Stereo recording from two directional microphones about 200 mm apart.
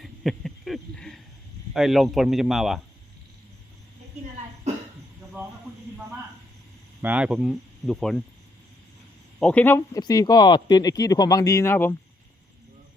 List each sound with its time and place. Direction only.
0.0 s a sound: centre (ahead or behind)
1.7 s speech: centre (ahead or behind)
7.0 s speech: 5° right (ahead or behind)
9.4 s speech: 5° left (ahead or behind)